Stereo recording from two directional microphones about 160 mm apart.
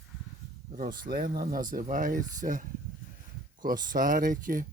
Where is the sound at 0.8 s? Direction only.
60° right (ahead or behind).